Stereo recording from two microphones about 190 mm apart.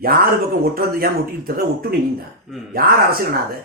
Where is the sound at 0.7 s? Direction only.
50° right (ahead or behind).